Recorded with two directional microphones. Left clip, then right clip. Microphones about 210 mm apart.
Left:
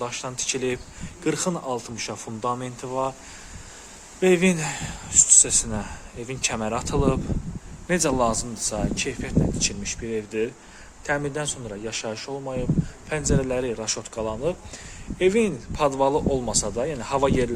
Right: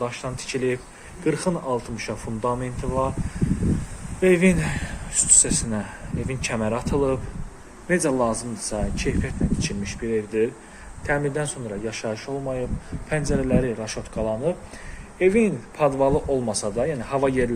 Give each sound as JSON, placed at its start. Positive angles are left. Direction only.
{"t": 0.0, "sound": "speech", "side_deg": 10}
{"t": 4.2, "sound": "speech", "side_deg": 15}